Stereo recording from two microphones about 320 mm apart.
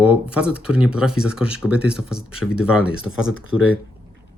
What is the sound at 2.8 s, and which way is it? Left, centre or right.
Speech, left.